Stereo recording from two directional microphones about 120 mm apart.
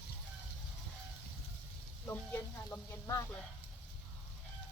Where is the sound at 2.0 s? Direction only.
15° left (ahead or behind).